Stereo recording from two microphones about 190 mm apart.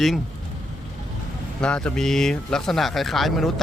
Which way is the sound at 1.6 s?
5° left (ahead or behind).